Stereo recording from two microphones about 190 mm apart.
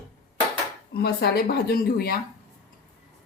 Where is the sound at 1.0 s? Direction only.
55° left (ahead or behind).